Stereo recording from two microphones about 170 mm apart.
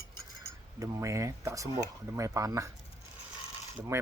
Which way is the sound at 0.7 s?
20° right (ahead or behind).